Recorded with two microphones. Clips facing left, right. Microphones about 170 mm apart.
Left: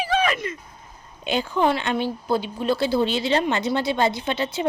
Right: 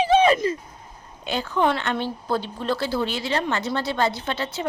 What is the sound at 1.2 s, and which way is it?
Speech, 20° left (ahead or behind).